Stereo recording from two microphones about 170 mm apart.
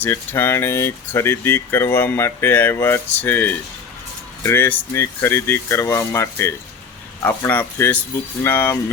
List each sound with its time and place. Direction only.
0.0 s speech: 10° left (ahead or behind)